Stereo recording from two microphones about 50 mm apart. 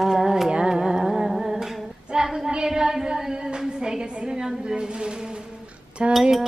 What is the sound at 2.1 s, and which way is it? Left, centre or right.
Child singing, centre.